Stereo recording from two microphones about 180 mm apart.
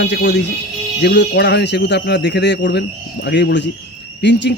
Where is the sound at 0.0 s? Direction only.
75° left (ahead or behind).